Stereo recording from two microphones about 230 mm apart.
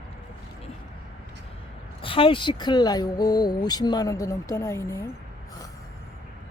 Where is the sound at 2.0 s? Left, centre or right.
Left.